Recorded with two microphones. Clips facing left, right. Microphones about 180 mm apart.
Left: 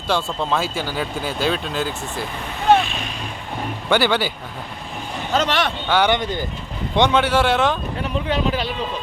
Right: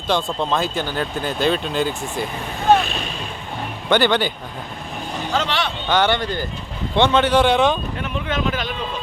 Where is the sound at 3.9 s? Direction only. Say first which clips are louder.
Right 1 dB; 10° left (ahead or behind).